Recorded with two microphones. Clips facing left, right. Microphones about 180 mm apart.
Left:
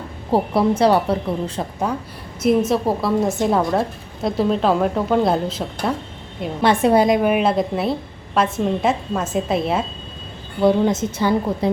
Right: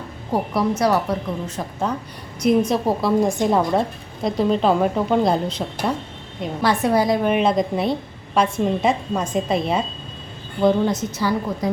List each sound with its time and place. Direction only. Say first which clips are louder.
0.3 s speech: left 4 dB; 30° left (ahead or behind)
1.9 s a woman's voice: left 1 dB; 10° left (ahead or behind)
6.6 s speech: left 4 dB; 25° left (ahead or behind)
7.2 s a woman's voice: left 1 dB; 5° left (ahead or behind)
10.8 s speech: left 3 dB; 25° left (ahead or behind)